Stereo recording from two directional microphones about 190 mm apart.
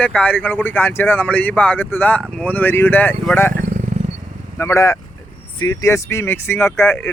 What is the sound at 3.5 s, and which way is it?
Wild animals, 45° right (ahead or behind).